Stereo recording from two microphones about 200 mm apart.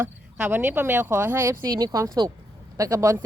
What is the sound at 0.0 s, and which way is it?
Speech, 10° right (ahead or behind).